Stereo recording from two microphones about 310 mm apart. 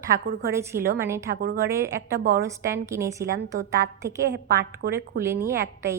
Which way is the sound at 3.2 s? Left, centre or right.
Right.